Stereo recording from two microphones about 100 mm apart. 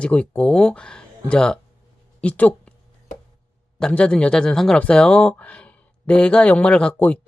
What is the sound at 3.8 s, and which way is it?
Speech, 10° left (ahead or behind).